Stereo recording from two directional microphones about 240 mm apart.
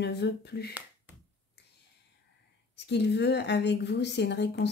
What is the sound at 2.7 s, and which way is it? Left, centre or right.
Speech, left.